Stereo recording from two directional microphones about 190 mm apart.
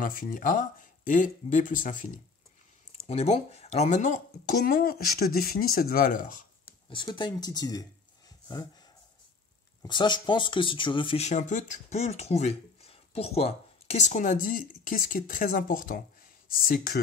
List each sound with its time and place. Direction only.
0.0 s speech: 45° left (ahead or behind)
6.9 s speech: 25° left (ahead or behind)
9.8 s speech: 25° left (ahead or behind); by 17.0 s 50° left (ahead or behind)